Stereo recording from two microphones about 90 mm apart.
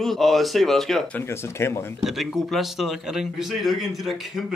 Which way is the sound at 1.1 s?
30° left (ahead or behind).